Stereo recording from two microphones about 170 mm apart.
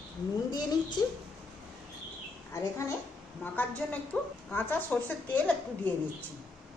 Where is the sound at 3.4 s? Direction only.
10° left (ahead or behind).